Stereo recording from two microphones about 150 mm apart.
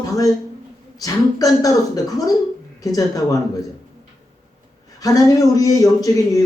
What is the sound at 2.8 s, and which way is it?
Speech, 20° left (ahead or behind).